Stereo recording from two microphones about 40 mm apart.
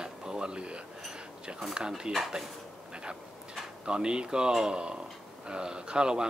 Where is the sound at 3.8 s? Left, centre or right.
Right.